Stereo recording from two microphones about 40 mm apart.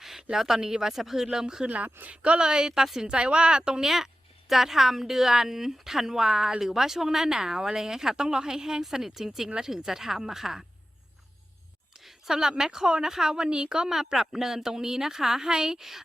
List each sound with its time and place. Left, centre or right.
0.0 s a sound: centre
0.3 s a woman's voice: centre
1.6 s speech: right
2.2 s a woman's voice: right; by 3.1 s centre
3.1 s a woman's voice: right
11.9 s a woman's voice: centre